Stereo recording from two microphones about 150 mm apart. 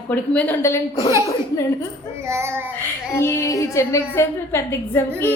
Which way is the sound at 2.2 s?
15° right (ahead or behind).